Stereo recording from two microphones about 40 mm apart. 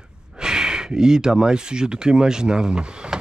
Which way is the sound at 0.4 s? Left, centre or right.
Centre.